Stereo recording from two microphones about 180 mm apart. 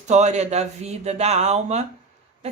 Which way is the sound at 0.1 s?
40° right (ahead or behind).